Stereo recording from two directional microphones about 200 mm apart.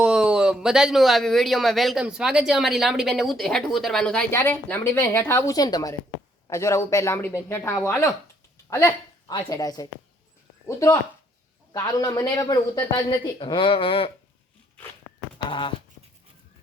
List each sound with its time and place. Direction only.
0.0 s speech: 5° right (ahead or behind); by 14.1 s 25° left (ahead or behind)
15.4 s speech: 25° left (ahead or behind)